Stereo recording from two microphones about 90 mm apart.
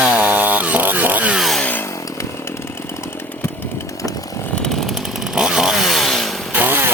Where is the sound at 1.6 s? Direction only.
20° left (ahead or behind).